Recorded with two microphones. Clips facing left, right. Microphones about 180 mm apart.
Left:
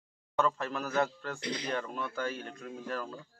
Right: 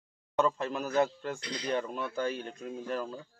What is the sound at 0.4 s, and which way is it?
Speech, 20° right (ahead or behind).